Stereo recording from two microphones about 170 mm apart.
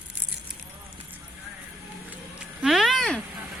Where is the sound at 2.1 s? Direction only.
5° right (ahead or behind).